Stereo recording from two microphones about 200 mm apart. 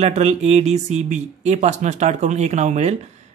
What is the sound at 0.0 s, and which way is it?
A man's voice, 30° right (ahead or behind).